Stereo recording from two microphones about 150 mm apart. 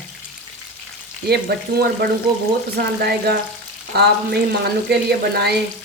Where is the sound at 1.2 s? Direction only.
90° right.